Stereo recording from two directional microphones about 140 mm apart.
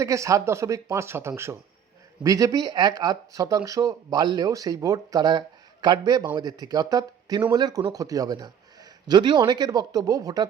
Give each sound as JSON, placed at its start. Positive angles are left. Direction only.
{"t": 0.0, "sound": "a man's voice", "side_deg": -20}